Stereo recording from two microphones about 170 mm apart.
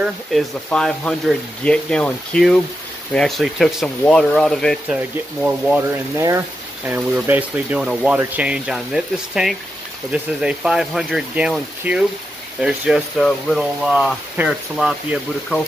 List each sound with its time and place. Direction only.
0.0 s speech: centre (ahead or behind)
6.1 s speech: 15° right (ahead or behind); by 15.6 s centre (ahead or behind)